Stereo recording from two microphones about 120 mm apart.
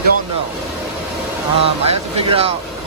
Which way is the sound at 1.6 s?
55° right (ahead or behind).